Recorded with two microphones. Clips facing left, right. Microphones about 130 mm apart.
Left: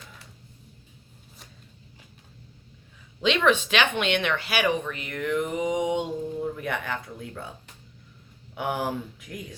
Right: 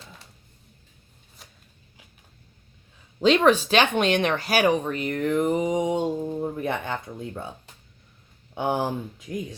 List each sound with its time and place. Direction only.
3.2 s speech: 40° right (ahead or behind)
8.5 s speech: 25° right (ahead or behind)